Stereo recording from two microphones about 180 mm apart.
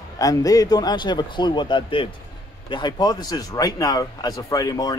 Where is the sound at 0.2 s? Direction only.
20° left (ahead or behind).